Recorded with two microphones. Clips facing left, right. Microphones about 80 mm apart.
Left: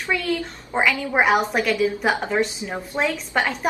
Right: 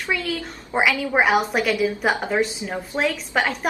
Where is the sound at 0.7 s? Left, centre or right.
Centre.